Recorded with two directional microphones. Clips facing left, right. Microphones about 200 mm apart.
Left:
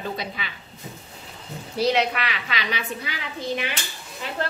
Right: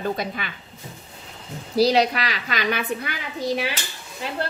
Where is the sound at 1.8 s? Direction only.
35° right (ahead or behind); by 3.2 s 55° right (ahead or behind).